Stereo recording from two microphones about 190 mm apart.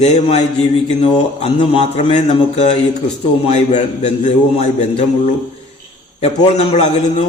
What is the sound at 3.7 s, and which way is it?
Speech, 35° left (ahead or behind).